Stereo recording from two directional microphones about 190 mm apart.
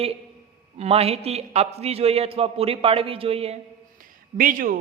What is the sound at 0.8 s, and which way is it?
A woman's voice, 30° right (ahead or behind).